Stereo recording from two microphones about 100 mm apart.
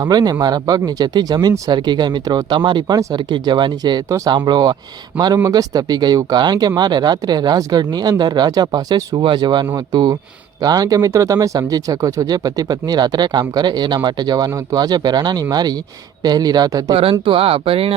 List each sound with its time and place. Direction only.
0.0 s speech: 40° right (ahead or behind)
9.2 s speech: 50° right (ahead or behind)
16.9 s speech: 65° right (ahead or behind)